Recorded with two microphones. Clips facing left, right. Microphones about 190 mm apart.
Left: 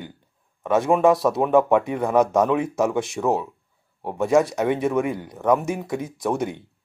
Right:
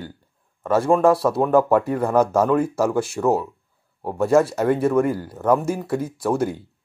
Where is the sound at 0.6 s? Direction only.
Centre (ahead or behind).